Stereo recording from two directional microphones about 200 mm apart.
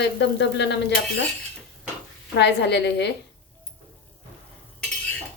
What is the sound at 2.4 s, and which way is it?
Speech, 60° left (ahead or behind).